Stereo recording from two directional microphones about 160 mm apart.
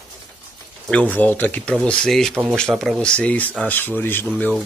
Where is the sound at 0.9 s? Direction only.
10° left (ahead or behind).